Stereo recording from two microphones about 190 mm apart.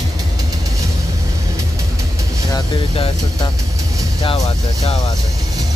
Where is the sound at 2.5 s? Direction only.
25° left (ahead or behind).